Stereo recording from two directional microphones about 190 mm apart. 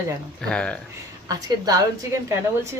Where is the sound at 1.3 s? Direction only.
20° right (ahead or behind).